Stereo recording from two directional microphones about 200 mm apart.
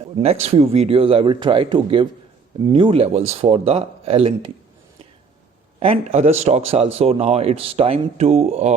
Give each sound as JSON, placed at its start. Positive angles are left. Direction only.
{"t": 0.2, "sound": "speech", "side_deg": -30}
{"t": 5.8, "sound": "a man's voice", "side_deg": -30}